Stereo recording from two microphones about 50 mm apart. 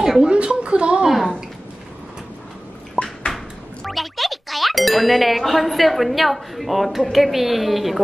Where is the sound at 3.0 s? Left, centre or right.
Left.